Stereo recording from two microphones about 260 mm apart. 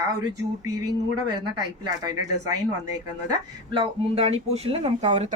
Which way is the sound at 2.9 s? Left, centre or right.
Centre.